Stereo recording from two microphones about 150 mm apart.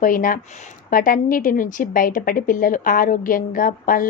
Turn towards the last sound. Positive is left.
turn(degrees=65)  # may be behind; listen again after turning